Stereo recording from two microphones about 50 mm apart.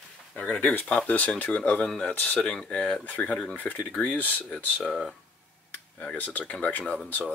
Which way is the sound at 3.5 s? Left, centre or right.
Left.